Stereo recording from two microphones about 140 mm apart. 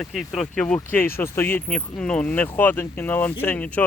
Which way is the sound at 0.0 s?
Centre (ahead or behind).